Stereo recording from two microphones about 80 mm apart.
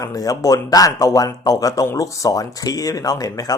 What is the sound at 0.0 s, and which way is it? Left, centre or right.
A man's voice, left.